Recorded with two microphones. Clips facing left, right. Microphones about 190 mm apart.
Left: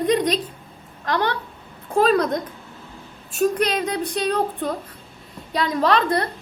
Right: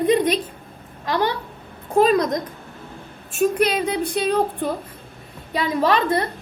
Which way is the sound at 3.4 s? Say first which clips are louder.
Right 1 dB; 10° right (ahead or behind).